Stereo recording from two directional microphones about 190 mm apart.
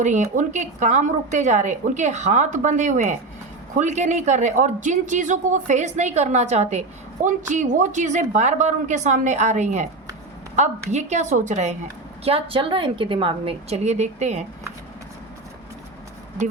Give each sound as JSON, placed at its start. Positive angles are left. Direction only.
{"t": 0.0, "sound": "a woman's voice", "side_deg": -40}